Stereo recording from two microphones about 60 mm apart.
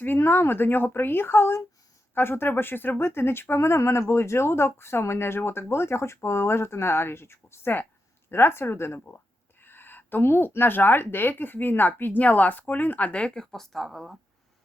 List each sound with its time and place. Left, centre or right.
0.0 s speech: left; by 14.2 s centre